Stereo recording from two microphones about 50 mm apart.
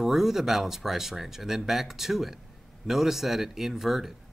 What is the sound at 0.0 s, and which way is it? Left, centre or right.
Speech, centre.